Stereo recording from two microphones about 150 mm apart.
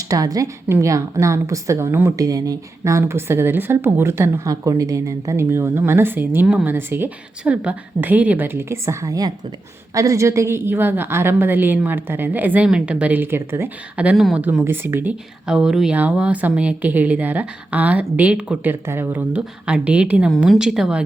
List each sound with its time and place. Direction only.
0.1 s a woman's voice: 25° right (ahead or behind); by 21.0 s 5° right (ahead or behind)